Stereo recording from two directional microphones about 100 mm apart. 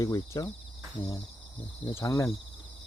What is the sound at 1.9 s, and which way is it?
Speech, 30° left (ahead or behind).